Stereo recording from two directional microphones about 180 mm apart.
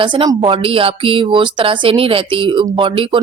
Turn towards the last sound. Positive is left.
turn(degrees=-30)  # may be behind; listen again after turning